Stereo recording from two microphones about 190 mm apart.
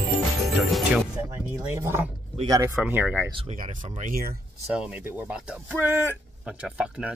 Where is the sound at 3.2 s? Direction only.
25° right (ahead or behind).